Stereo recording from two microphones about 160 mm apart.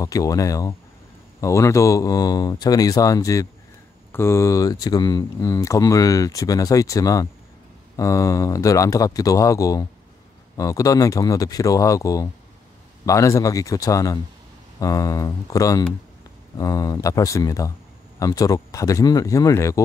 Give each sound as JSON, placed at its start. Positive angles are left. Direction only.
{"t": 0.0, "sound": "speech", "side_deg": 20}